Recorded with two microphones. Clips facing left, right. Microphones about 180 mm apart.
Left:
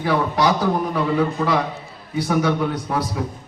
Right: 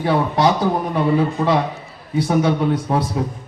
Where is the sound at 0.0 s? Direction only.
25° right (ahead or behind).